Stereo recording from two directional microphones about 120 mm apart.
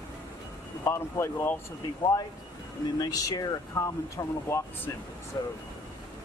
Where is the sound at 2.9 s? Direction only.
35° left (ahead or behind).